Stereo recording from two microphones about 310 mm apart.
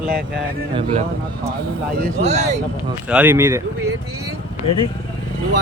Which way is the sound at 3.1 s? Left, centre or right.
Centre.